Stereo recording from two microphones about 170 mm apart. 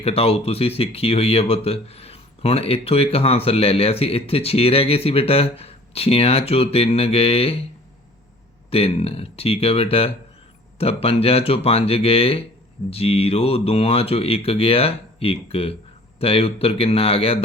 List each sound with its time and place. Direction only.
0.0 s speech: 35° left (ahead or behind)
8.7 s speech: 35° left (ahead or behind)